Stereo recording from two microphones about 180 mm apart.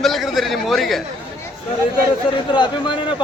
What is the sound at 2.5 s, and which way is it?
Speech, 25° left (ahead or behind).